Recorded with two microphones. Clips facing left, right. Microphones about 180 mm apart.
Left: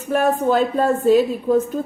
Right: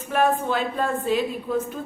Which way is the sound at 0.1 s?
40° left (ahead or behind).